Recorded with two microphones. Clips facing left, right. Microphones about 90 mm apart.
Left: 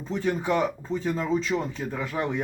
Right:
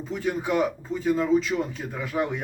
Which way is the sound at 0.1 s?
10° right (ahead or behind).